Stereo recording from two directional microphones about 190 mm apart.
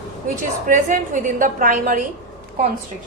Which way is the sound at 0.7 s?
40° right (ahead or behind).